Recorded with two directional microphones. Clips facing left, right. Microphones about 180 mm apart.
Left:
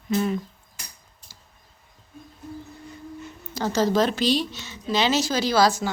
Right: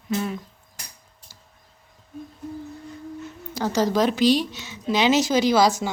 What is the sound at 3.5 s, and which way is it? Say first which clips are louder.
Speech: even; 15° right (ahead or behind).